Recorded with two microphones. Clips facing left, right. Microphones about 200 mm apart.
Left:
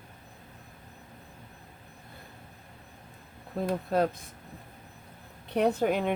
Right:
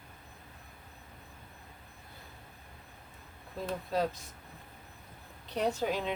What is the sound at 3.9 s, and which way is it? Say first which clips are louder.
Speech: left 4 dB; 55° left (ahead or behind).